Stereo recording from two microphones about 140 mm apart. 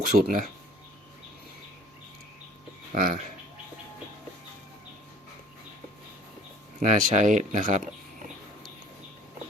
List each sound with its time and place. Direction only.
0.0 s speech: 85° right
2.9 s speech: 75° right (ahead or behind)
6.7 s speech: 65° right (ahead or behind)